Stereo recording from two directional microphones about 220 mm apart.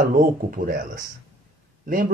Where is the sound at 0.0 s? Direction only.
40° right (ahead or behind).